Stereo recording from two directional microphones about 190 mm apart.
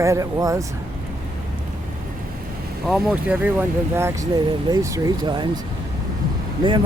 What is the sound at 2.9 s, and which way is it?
Speech, 5° right (ahead or behind).